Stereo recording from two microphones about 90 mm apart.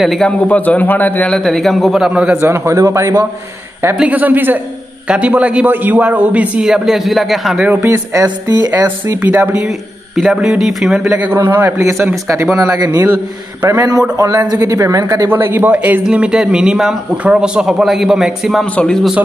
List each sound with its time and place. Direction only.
0.0 s a man's voice: centre (ahead or behind)
0.4 s a man's voice: 15° left (ahead or behind)
1.3 s a man's voice: 5° left (ahead or behind); by 2.3 s 10° right (ahead or behind)
2.3 s a man's voice: 30° right (ahead or behind)
3.9 s a man's voice: 15° right (ahead or behind)
7.5 s a man's voice: 15° right (ahead or behind)
7.8 s a man's voice: 35° right (ahead or behind)
8.7 s a man's voice: 25° right (ahead or behind)
9.6 s a man's voice: centre (ahead or behind)
11.3 s a man's voice: 25° right (ahead or behind)
12.7 s a man's voice: 45° right (ahead or behind)
14.1 s a man's voice: 40° right (ahead or behind)
15.2 s a man's voice: 25° right (ahead or behind); by 18.7 s centre (ahead or behind)
18.8 s a man's voice: 10° left (ahead or behind)